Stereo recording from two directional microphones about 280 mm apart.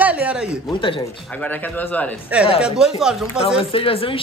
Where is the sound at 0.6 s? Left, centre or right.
Centre.